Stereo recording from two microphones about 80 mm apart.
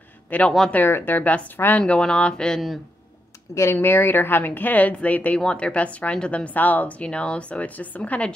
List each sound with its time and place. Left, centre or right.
0.3 s a woman's voice: centre
3.7 s a woman's voice: left